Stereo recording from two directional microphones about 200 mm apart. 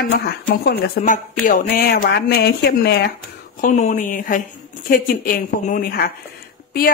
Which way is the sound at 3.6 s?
40° left (ahead or behind).